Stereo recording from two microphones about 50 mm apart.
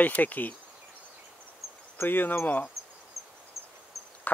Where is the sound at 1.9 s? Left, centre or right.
Left.